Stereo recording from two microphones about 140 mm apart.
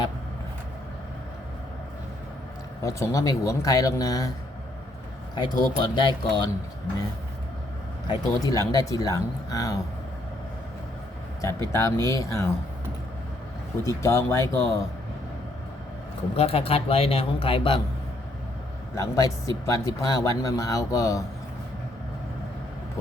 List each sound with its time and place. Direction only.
2.8 s speech: 25° left (ahead or behind)
5.3 s speech: 30° left (ahead or behind)
8.0 s speech: 30° left (ahead or behind)
11.7 s speech: 20° left (ahead or behind)
13.8 s speech: 20° left (ahead or behind)
16.3 s speech: 45° left (ahead or behind)
18.9 s speech: 25° left (ahead or behind)